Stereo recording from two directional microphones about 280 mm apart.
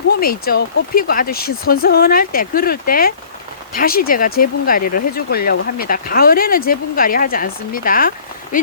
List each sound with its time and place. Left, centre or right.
0.2 s speech: left